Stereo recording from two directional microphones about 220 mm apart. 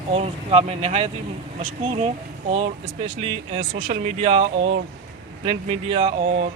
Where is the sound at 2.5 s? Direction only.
30° right (ahead or behind).